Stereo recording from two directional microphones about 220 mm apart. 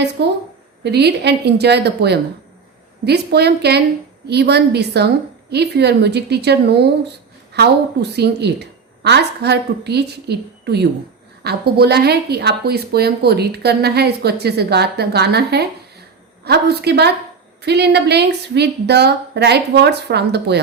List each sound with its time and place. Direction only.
0.2 s a woman's voice: 50° right (ahead or behind)